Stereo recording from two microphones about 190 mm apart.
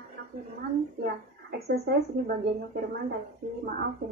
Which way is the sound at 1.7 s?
55° right (ahead or behind).